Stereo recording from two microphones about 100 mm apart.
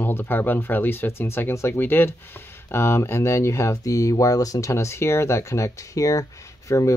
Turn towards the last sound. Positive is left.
turn(degrees=30)  # may be behind; listen again after turning